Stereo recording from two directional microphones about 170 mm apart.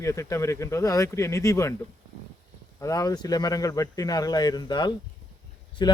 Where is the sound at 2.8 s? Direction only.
20° left (ahead or behind).